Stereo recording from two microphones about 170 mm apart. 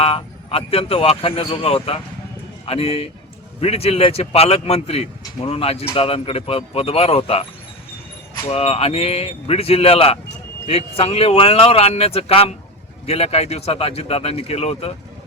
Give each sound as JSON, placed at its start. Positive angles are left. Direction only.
{"t": 0.0, "sound": "speech", "side_deg": 35}
{"t": 8.4, "sound": "speech", "side_deg": 35}